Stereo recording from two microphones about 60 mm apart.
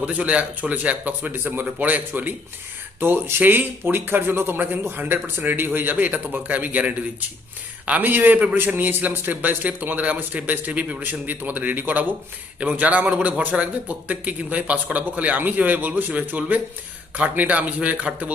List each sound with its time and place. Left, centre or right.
0.0 s a man's voice: right